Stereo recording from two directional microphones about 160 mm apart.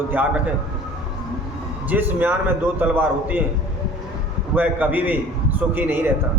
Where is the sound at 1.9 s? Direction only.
10° right (ahead or behind).